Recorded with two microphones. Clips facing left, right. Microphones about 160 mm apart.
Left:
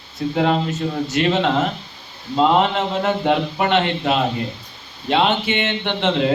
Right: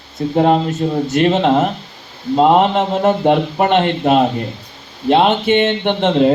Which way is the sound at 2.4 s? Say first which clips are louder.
Right 4 dB; 45° right (ahead or behind).